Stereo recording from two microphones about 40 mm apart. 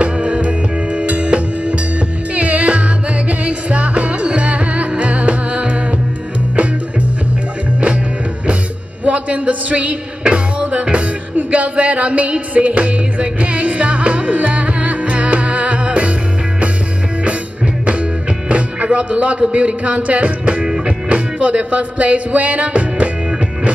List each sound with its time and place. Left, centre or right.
0.0 s music: right
9.0 s music: right
18.5 s music: right
20.6 s music: centre
21.1 s music: right